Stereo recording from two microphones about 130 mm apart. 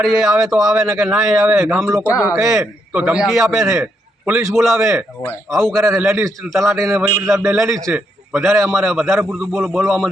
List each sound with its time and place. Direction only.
0.0 s a man's voice: centre (ahead or behind)
6.1 s a man's voice: 20° right (ahead or behind)
6.5 s a man's voice: centre (ahead or behind)